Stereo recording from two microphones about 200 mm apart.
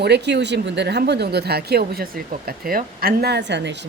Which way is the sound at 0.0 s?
60° right (ahead or behind).